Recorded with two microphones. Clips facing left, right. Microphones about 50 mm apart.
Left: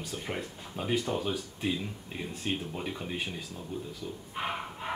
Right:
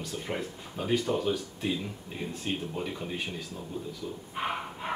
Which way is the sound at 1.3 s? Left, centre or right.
Centre.